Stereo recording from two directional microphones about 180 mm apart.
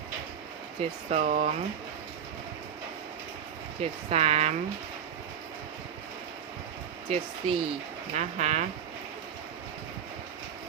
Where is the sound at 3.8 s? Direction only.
35° right (ahead or behind).